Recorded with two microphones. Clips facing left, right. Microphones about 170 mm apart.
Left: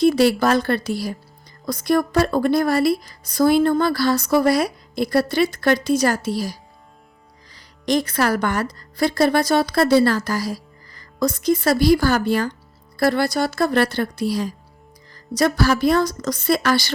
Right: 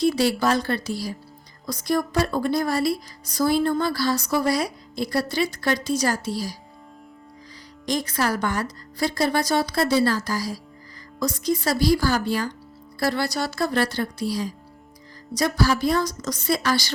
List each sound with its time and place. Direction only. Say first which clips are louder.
0.0 s speech: left 5 dB; 60° left (ahead or behind)
7.9 s speech: left 5 dB; 65° left (ahead or behind)